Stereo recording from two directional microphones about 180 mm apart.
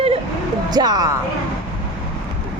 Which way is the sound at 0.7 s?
20° right (ahead or behind).